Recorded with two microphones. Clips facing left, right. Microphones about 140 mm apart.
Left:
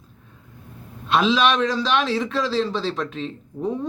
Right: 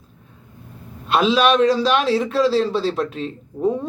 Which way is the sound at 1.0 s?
5° right (ahead or behind).